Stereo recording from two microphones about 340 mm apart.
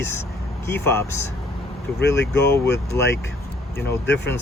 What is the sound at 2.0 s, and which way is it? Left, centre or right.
Speech, left.